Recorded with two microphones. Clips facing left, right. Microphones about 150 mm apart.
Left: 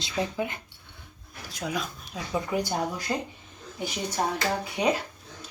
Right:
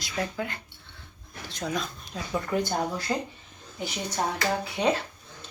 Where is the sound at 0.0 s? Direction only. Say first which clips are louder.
Left 2 dB; 20° left (ahead or behind).